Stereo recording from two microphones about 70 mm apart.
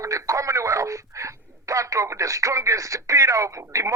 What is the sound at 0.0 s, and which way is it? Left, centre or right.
Speech, right.